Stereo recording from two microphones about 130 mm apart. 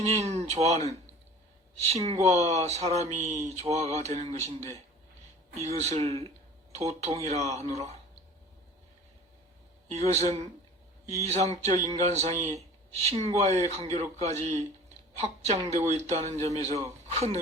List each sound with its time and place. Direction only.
0.2 s speech: 55° right (ahead or behind)
1.9 s speech: 55° right (ahead or behind)
5.6 s speech: 60° right (ahead or behind)
9.9 s speech: 55° right (ahead or behind)